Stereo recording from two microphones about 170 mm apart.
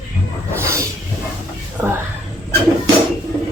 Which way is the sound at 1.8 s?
15° right (ahead or behind).